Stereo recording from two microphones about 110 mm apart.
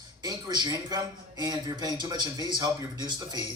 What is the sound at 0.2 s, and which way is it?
Speech, 40° right (ahead or behind).